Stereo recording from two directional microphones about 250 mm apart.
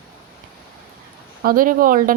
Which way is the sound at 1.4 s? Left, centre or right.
Right.